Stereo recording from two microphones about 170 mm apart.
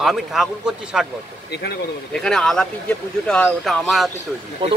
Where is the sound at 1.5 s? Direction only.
75° left (ahead or behind).